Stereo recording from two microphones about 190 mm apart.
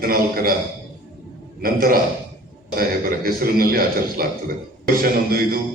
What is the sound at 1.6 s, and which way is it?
A man's voice, 50° right (ahead or behind).